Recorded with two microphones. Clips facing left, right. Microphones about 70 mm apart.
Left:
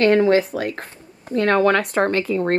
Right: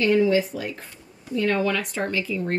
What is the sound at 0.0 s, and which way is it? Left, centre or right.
A woman's voice, left.